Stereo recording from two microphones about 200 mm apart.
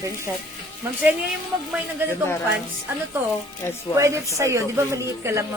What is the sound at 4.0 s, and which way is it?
A woman's voice, 15° right (ahead or behind).